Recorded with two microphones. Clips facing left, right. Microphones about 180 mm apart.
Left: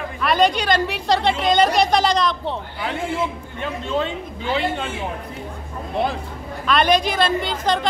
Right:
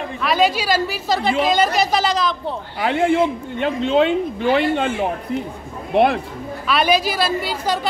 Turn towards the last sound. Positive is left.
turn(degrees=-5)  # may be behind; listen again after turning